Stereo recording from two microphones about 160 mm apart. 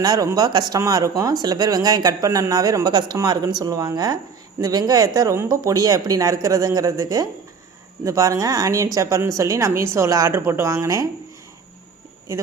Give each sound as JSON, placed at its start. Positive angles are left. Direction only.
{"t": 0.0, "sound": "speech", "side_deg": -25}